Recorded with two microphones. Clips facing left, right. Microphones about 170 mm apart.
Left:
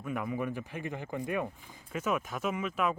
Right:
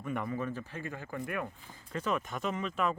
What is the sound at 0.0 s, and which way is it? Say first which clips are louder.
Speech: left 1 dB; 5° left (ahead or behind).